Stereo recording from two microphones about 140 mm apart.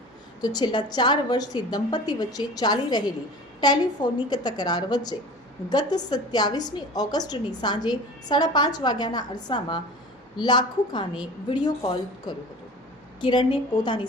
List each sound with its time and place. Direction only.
0.4 s a woman's voice: 30° left (ahead or behind)